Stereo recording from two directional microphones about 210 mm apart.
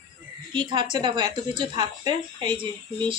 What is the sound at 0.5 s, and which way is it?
A woman's voice, 20° right (ahead or behind).